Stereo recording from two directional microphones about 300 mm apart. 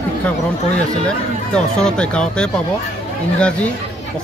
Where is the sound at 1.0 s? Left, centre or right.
Centre.